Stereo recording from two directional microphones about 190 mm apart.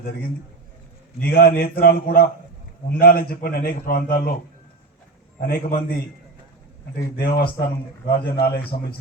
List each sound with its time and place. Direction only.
0.0 s a man's voice: 50° left (ahead or behind)
5.4 s a man's voice: 50° left (ahead or behind)
7.2 s a man's voice: 45° left (ahead or behind)